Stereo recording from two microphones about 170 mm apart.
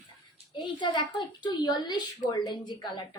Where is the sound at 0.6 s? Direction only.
25° left (ahead or behind).